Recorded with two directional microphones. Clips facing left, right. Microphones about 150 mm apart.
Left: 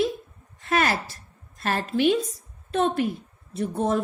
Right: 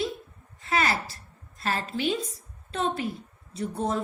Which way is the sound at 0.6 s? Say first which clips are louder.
Left 3 dB; 55° left (ahead or behind).